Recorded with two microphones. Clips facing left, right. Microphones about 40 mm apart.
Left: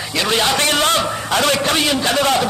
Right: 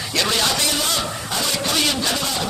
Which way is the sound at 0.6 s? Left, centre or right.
Left.